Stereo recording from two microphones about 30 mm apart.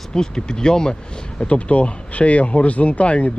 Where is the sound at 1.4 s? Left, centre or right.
Left.